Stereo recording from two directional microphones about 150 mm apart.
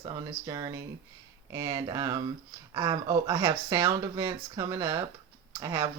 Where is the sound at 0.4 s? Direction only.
25° right (ahead or behind).